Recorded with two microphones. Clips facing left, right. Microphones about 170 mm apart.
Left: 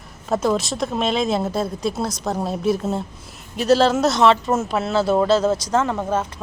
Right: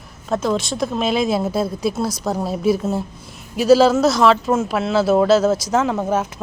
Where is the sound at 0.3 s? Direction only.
5° left (ahead or behind).